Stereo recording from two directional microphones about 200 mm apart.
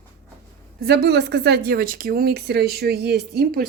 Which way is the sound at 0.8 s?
55° right (ahead or behind).